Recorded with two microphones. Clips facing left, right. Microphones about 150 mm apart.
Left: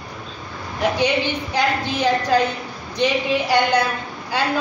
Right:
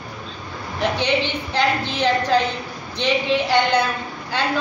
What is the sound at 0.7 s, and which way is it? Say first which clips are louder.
A woman's voice: left 1 dB; 10° left (ahead or behind).